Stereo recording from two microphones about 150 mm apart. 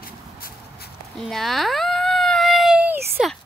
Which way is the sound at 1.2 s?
Centre (ahead or behind).